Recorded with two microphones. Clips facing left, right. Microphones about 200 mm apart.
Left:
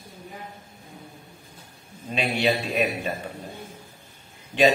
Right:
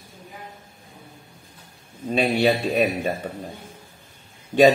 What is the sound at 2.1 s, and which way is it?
Speech, 35° right (ahead or behind).